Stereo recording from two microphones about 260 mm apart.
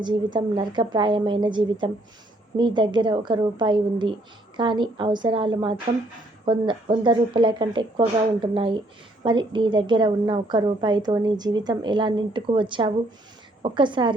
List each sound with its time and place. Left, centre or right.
0.0 s a woman's voice: centre